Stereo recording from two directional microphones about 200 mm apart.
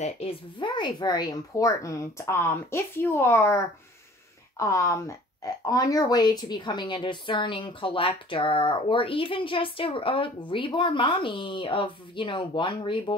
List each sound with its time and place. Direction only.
0.0 s speech: 25° left (ahead or behind)